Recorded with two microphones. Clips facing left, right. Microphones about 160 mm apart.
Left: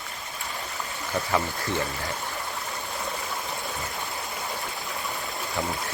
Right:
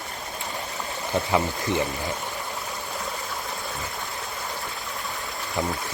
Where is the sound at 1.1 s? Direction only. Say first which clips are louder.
Right 3 dB; 20° right (ahead or behind).